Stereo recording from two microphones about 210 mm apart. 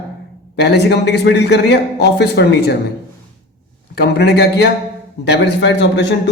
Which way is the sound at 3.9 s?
50° left (ahead or behind).